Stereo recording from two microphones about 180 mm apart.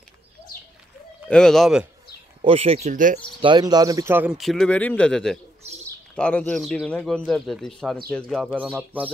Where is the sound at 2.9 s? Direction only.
45° right (ahead or behind).